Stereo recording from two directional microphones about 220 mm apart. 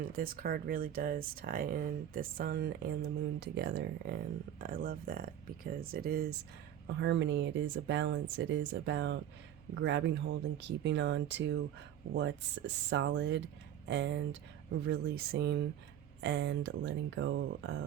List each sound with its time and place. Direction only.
0.0 s speech: 40° right (ahead or behind)
6.8 s speech: 55° right (ahead or behind)